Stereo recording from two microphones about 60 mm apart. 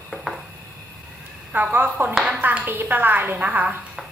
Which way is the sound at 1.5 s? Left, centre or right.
Right.